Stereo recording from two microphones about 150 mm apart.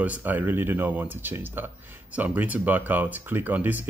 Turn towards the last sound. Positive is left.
turn(degrees=-10)  # may be behind; listen again after turning